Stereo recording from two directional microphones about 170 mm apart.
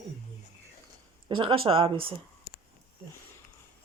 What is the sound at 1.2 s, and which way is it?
Speech, 30° right (ahead or behind).